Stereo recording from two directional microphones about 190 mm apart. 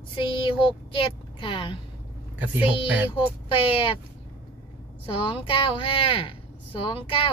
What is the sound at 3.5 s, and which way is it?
Speech, 25° left (ahead or behind).